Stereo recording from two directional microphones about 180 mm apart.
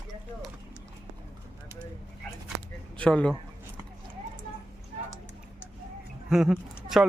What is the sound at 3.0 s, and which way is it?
Speech, 5° left (ahead or behind).